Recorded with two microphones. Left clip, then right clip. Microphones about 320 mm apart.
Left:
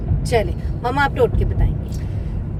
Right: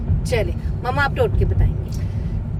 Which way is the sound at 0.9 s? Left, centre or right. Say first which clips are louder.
Left 2 dB; centre.